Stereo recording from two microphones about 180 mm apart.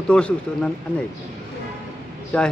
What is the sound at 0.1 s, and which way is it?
Speech, 5° left (ahead or behind).